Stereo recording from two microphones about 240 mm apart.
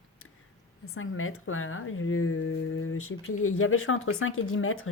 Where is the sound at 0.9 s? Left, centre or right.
Left.